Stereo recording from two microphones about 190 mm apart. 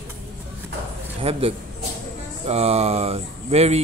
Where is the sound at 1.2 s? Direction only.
30° right (ahead or behind).